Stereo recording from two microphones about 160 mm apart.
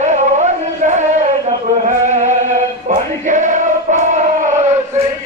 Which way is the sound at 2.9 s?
50° right (ahead or behind).